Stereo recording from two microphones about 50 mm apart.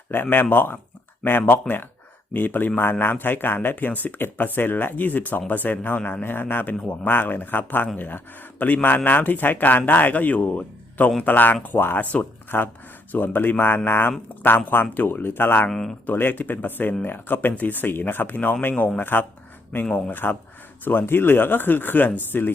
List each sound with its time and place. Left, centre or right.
0.1 s speech: left
15.7 s speech: centre
16.0 s speech: left